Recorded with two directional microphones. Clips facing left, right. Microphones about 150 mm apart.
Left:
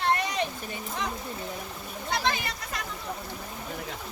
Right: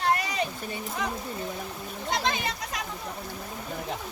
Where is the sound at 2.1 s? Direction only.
20° right (ahead or behind).